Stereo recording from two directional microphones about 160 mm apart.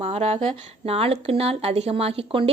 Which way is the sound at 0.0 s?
40° right (ahead or behind).